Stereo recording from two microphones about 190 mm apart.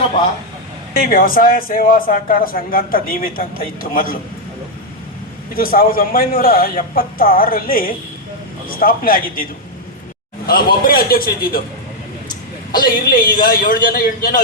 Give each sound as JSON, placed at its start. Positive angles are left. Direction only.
{"t": 0.9, "sound": "speech", "side_deg": 45}
{"t": 5.5, "sound": "speech", "side_deg": 50}
{"t": 12.8, "sound": "speech", "side_deg": 50}